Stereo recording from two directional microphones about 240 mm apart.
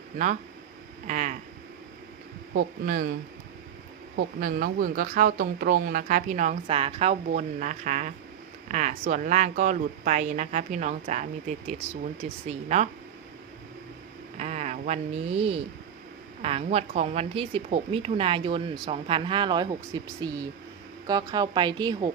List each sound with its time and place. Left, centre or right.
1.0 s speech: right
2.5 s speech: right
4.4 s a woman's voice: right
14.3 s a woman's voice: right